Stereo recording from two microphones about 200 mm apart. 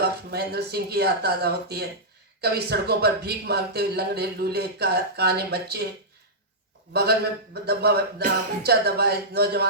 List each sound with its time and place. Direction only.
0.3 s a man's voice: 50° right (ahead or behind)
6.9 s a man's voice: 55° right (ahead or behind)